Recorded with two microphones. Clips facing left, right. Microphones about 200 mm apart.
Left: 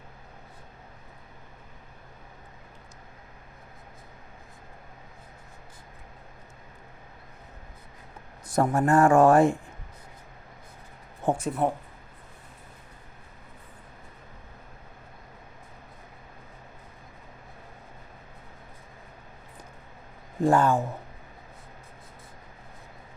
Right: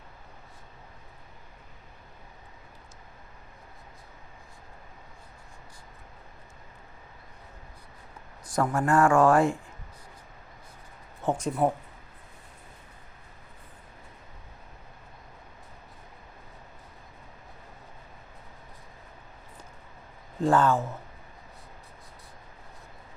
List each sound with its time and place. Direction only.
8.5 s speech: 25° left (ahead or behind)
11.2 s speech: 10° left (ahead or behind)
20.4 s speech: 15° left (ahead or behind)